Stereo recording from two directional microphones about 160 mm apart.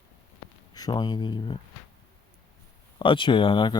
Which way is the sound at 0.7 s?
25° left (ahead or behind).